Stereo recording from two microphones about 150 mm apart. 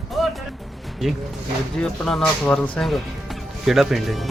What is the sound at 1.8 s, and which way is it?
Speech, 5° left (ahead or behind).